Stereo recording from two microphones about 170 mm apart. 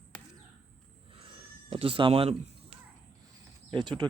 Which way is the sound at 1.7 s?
30° right (ahead or behind).